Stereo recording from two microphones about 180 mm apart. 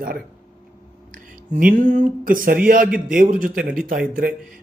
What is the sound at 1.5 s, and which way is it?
Speech, 45° right (ahead or behind).